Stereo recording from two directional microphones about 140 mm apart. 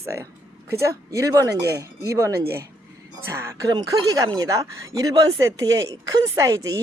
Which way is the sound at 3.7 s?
30° right (ahead or behind).